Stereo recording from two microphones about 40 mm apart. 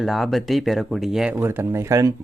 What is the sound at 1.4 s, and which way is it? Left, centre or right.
Speech, right.